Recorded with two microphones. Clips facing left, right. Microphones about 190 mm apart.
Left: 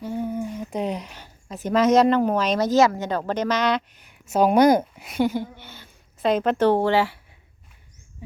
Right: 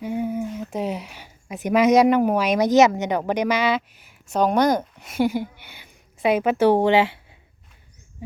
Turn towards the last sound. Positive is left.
turn(degrees=-20)  # may be behind; listen again after turning